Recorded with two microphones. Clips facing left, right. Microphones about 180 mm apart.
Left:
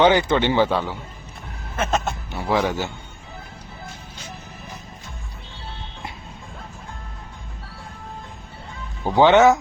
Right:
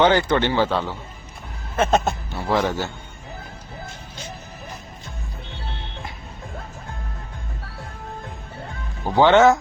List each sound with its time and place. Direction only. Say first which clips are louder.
0.0 s speech: left 1 dB; 15° left (ahead or behind)
1.7 s a sound: right 4 dB; 35° right (ahead or behind)
2.3 s a man's voice: left 1 dB; 15° left (ahead or behind)
9.0 s speech: even; 15° left (ahead or behind)